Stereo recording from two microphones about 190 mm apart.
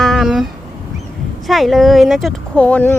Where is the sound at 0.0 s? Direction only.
Centre (ahead or behind).